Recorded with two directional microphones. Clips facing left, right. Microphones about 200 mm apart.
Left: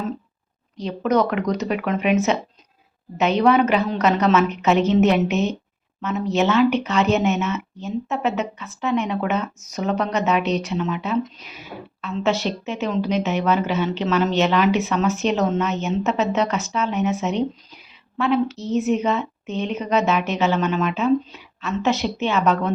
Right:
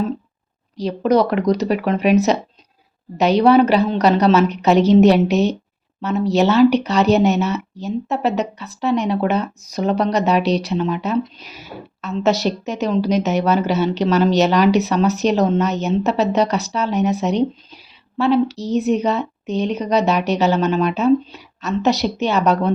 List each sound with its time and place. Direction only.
0.8 s speech: 35° right (ahead or behind)